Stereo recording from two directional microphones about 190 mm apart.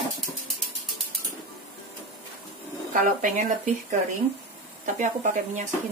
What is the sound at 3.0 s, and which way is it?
Speech, 40° right (ahead or behind).